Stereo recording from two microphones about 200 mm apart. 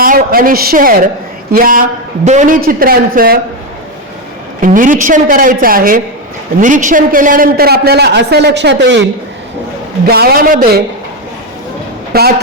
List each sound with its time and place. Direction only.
0.0 s a man's voice: 45° right (ahead or behind)
4.6 s a man's voice: 40° right (ahead or behind); by 9.0 s 60° right (ahead or behind)
10.1 s a man's voice: 50° right (ahead or behind)
12.1 s a man's voice: 50° right (ahead or behind)